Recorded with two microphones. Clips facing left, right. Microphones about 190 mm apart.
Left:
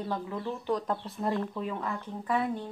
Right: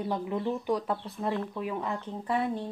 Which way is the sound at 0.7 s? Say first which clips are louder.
Right 1 dB; 5° right (ahead or behind).